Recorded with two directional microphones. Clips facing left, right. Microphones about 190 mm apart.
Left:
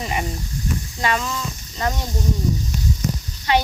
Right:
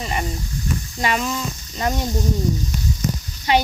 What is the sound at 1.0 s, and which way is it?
Speech, 15° right (ahead or behind).